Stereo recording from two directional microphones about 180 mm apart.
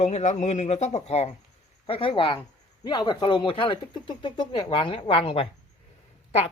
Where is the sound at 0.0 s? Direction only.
40° left (ahead or behind).